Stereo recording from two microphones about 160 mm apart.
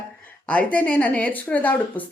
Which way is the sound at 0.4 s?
10° left (ahead or behind).